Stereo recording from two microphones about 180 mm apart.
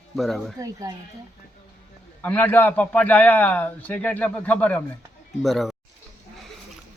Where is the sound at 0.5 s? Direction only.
20° right (ahead or behind).